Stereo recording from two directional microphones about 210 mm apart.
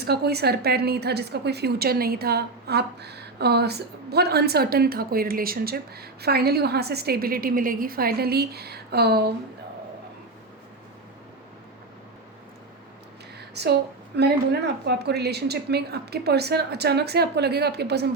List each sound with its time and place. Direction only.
0.0 s a woman's voice: 50° right (ahead or behind)
13.5 s a woman's voice: 50° right (ahead or behind)